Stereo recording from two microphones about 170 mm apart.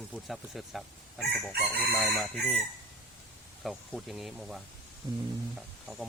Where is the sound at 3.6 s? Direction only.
Centre (ahead or behind).